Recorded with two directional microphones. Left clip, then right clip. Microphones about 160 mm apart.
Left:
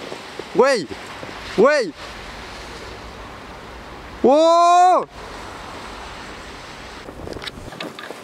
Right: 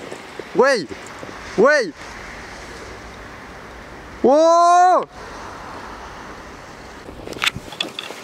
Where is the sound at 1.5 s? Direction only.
25° left (ahead or behind).